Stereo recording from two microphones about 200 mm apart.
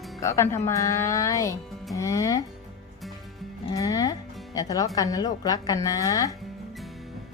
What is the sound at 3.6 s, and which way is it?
Music, 15° left (ahead or behind).